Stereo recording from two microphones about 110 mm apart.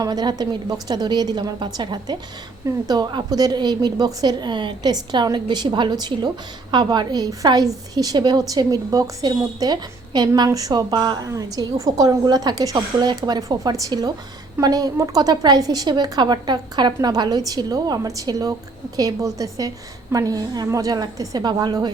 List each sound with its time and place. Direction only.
0.0 s a woman's voice: 35° right (ahead or behind)